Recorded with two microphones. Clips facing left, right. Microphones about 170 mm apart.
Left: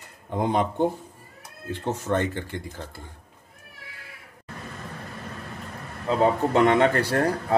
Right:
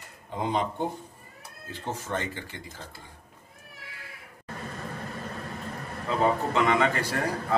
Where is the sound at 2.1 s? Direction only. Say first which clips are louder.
Left 10 dB; 55° left (ahead or behind).